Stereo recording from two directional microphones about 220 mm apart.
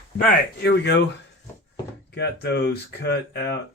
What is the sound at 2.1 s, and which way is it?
Speech, 50° left (ahead or behind).